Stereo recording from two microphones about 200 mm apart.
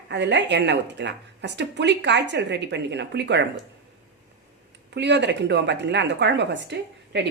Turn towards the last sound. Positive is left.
turn(degrees=-60)  # may be behind; listen again after turning